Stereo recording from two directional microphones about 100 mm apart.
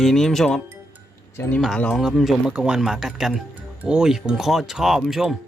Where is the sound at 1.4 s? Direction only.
30° left (ahead or behind).